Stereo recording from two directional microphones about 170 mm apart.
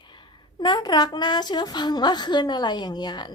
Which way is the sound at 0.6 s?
25° left (ahead or behind).